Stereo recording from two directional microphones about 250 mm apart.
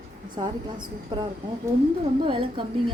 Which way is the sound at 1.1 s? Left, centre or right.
Centre.